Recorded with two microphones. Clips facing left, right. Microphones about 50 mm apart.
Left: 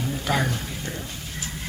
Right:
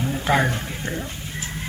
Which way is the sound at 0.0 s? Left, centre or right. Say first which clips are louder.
Right 4 dB; right.